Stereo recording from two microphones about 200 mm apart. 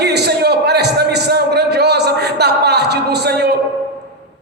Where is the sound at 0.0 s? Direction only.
55° right (ahead or behind).